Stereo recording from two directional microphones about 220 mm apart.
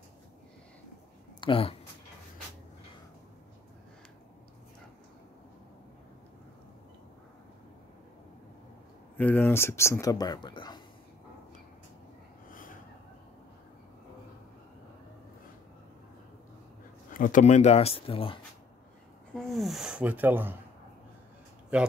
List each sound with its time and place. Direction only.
1.4 s speech: 25° left (ahead or behind)
9.1 s speech: 10° left (ahead or behind)
12.4 s a sound: 40° left (ahead or behind)
17.1 s speech: 35° left (ahead or behind)
19.3 s speech: centre (ahead or behind)
21.7 s speech: 5° right (ahead or behind)